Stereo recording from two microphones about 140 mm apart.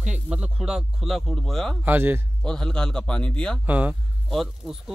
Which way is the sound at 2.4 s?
5° left (ahead or behind).